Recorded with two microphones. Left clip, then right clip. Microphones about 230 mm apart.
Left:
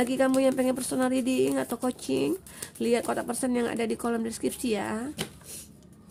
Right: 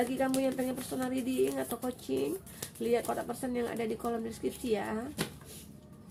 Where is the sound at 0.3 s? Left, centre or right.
Left.